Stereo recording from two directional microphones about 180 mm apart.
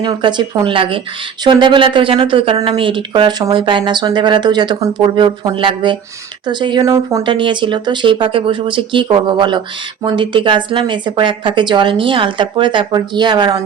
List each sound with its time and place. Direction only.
0.0 s speech: 25° right (ahead or behind)
7.2 s speech: 25° right (ahead or behind)